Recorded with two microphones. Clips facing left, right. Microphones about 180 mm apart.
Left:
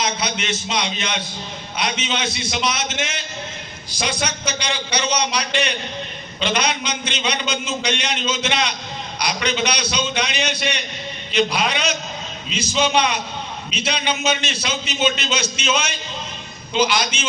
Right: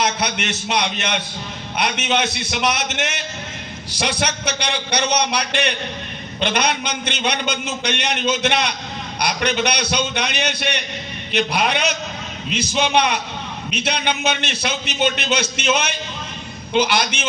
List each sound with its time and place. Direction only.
0.0 s a man's voice: 65° right (ahead or behind)